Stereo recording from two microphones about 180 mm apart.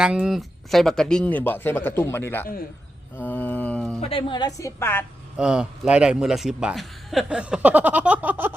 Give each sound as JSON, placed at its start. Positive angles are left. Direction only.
{"t": 0.0, "sound": "a man's voice", "side_deg": -5}
{"t": 2.0, "sound": "mantra", "side_deg": 15}
{"t": 4.0, "sound": "a woman's voice", "side_deg": 30}
{"t": 5.4, "sound": "a man's voice", "side_deg": -5}